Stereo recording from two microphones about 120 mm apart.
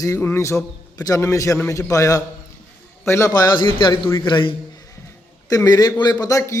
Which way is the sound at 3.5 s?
40° left (ahead or behind).